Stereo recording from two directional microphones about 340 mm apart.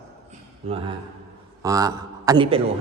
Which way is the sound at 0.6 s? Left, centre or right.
Centre.